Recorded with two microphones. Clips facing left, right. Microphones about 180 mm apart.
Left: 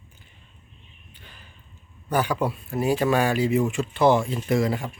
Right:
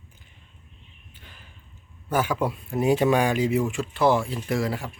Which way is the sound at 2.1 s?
5° right (ahead or behind).